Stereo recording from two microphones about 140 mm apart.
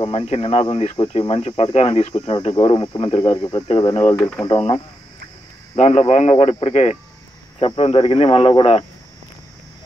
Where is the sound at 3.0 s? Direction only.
50° left (ahead or behind).